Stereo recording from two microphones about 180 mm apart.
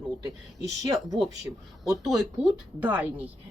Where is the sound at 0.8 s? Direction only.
20° right (ahead or behind).